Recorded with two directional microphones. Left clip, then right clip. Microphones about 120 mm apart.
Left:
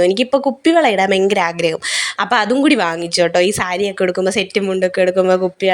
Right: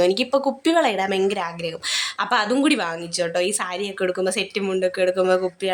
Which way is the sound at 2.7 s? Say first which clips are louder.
Left 9 dB; 75° left (ahead or behind).